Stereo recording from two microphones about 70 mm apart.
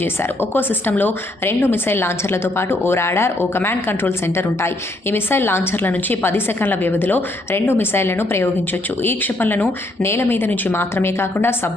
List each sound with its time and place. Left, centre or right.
0.0 s a woman's voice: left